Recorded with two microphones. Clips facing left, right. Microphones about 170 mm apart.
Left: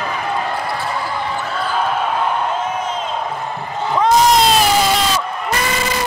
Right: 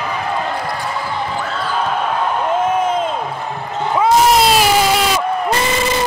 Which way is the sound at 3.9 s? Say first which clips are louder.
Right 1 dB; 5° right (ahead or behind).